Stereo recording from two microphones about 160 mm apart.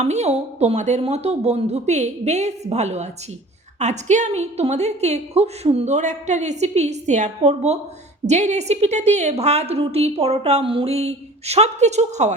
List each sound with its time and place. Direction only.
0.0 s a woman's voice: 45° right (ahead or behind)